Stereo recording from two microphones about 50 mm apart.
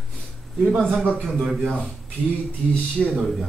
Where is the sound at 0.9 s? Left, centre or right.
Centre.